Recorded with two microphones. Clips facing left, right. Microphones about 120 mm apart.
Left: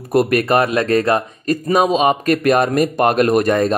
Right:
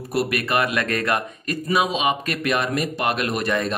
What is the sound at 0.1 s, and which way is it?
Speech, 45° left (ahead or behind).